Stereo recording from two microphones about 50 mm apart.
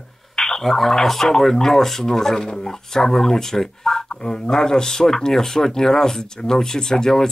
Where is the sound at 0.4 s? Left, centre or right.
Centre.